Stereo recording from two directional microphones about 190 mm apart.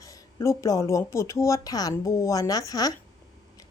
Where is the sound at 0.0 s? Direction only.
20° left (ahead or behind).